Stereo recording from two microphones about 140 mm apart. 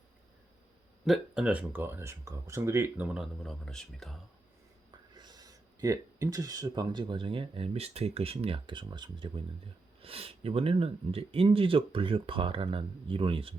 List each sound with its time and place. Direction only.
1.0 s speech: 5° right (ahead or behind)
3.4 s speech: 5° left (ahead or behind)
4.9 s speech: 30° right (ahead or behind)